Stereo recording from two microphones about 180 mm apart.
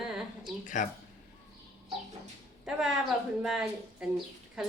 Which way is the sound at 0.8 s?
45° left (ahead or behind).